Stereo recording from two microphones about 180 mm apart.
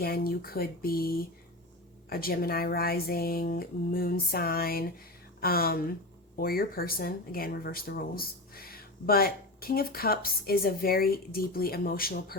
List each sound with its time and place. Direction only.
0.0 s speech: 55° left (ahead or behind)